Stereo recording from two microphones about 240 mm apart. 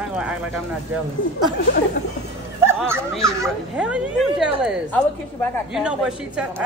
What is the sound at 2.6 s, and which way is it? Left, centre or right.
Bow-wow, centre.